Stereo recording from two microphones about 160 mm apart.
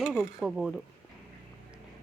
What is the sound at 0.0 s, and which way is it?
Speech, centre (ahead or behind).